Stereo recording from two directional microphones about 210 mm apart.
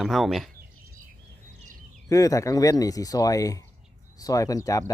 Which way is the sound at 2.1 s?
15° left (ahead or behind).